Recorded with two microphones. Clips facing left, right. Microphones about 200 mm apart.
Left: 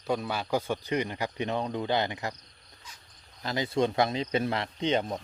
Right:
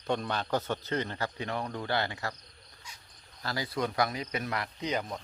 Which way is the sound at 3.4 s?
20° left (ahead or behind).